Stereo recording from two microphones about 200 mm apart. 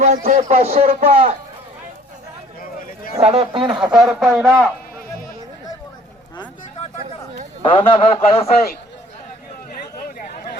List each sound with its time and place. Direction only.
0.0 s a man's voice: 40° right (ahead or behind)
2.6 s a sound: 45° left (ahead or behind)
3.2 s speech: 30° right (ahead or behind)
3.8 s speech: centre (ahead or behind)
7.6 s speech: 25° left (ahead or behind)